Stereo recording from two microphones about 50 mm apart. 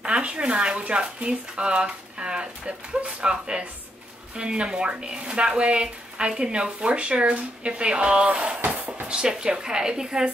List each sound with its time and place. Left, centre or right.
0.0 s speech: right
8.6 s music: right
9.0 s a woman's voice: centre